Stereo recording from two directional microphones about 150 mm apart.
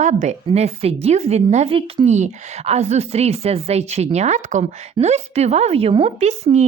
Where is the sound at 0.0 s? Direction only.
50° right (ahead or behind).